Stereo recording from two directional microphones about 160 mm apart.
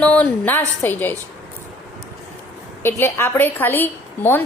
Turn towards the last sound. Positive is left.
turn(degrees=10)  # may be behind; listen again after turning